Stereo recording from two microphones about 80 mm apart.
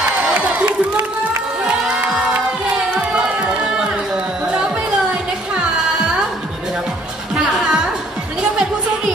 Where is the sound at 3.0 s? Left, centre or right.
Centre.